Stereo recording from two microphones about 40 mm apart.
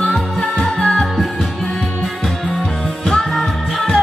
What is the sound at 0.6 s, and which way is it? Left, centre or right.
Music, centre.